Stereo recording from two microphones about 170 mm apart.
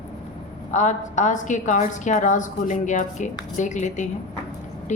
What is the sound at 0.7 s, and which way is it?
A woman's voice, 45° left (ahead or behind).